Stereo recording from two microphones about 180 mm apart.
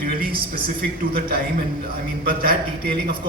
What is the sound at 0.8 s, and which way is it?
A man's voice, 60° right (ahead or behind).